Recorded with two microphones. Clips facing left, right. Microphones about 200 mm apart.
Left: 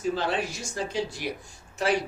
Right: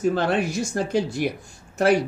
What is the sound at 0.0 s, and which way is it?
Speech, 55° right (ahead or behind).